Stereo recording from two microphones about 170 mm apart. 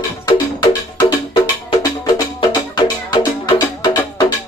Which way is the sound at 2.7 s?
25° left (ahead or behind).